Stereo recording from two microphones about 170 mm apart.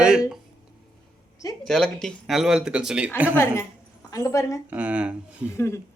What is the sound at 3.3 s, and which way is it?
Speech, 15° left (ahead or behind).